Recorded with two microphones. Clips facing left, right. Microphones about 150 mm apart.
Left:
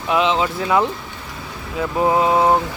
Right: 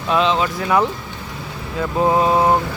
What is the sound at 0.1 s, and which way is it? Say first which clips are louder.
Speech: even; 20° left (ahead or behind).